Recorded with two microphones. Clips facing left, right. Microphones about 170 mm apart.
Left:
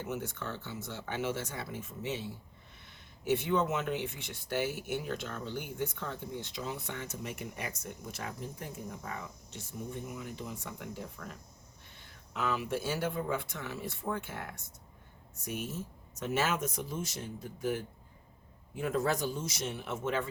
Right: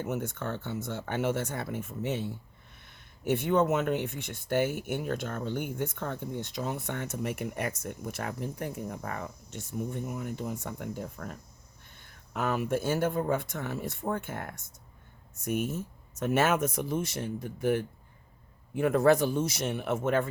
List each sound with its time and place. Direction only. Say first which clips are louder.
0.0 s speech: right 5 dB; 50° right (ahead or behind)